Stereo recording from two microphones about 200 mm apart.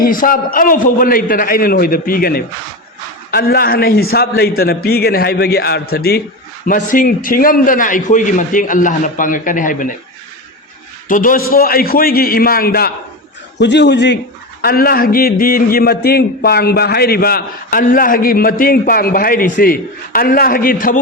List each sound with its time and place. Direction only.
0.0 s a man's voice: 45° left (ahead or behind)
11.1 s a man's voice: 45° left (ahead or behind)
13.6 s a man's voice: 60° left (ahead or behind)
14.6 s a man's voice: 50° left (ahead or behind)